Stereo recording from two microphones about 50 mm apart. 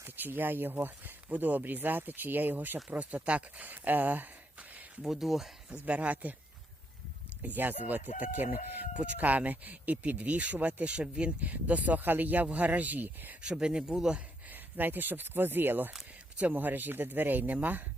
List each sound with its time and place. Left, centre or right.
0.2 s speech: right
2.9 s speech: right
5.0 s speech: centre
5.7 s speech: right
7.4 s speech: right
13.4 s speech: centre
14.5 s speech: right